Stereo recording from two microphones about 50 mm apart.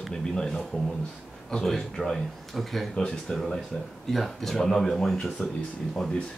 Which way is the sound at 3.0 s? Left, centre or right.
Centre.